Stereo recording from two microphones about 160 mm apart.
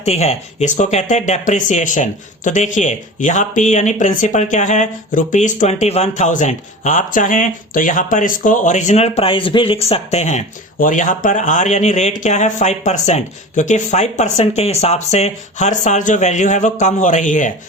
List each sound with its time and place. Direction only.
0.0 s speech: 40° left (ahead or behind)